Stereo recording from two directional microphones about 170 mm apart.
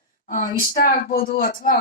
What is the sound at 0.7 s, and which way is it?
Speech, 60° left (ahead or behind).